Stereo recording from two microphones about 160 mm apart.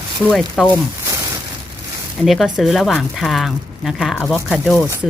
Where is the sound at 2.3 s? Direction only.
Centre (ahead or behind).